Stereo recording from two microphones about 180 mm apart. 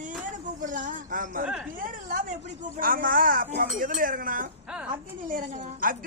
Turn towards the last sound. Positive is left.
turn(degrees=-50)  # may be behind; listen again after turning